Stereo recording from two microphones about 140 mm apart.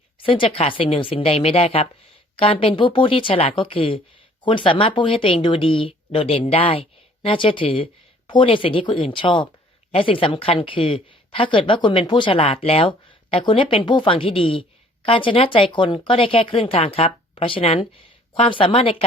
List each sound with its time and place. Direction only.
0.2 s a woman's voice: 40° left (ahead or behind)